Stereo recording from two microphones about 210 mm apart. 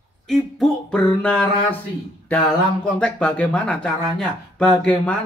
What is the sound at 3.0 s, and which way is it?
Speech, 5° left (ahead or behind).